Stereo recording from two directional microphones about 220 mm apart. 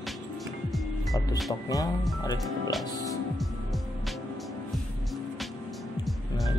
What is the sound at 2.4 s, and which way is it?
Speech, centre (ahead or behind).